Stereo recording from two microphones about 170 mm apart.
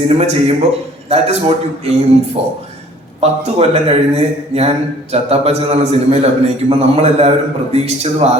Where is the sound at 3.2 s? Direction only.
40° right (ahead or behind).